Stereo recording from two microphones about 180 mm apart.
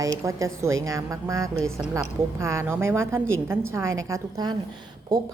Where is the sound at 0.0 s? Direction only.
15° right (ahead or behind).